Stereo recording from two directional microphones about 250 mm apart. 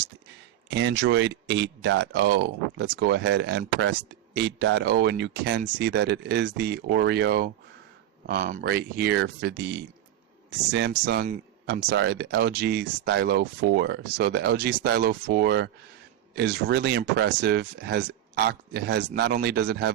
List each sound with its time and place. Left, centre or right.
0.7 s speech: right